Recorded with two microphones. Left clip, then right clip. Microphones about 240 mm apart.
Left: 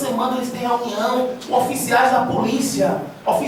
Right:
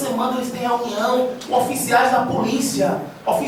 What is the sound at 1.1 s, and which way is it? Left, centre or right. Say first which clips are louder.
A woman's voice: even; centre.